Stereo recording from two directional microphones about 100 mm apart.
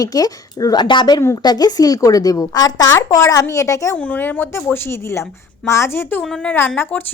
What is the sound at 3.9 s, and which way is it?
A woman's voice, 15° left (ahead or behind).